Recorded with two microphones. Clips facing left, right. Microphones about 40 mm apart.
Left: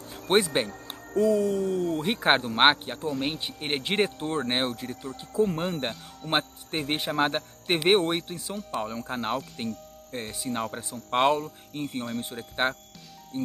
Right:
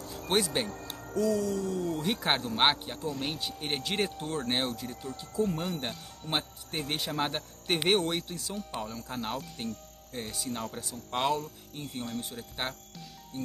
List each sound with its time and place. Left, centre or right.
0.3 s speech: left